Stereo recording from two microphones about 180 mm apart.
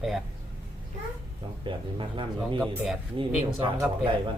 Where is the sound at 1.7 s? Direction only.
30° right (ahead or behind).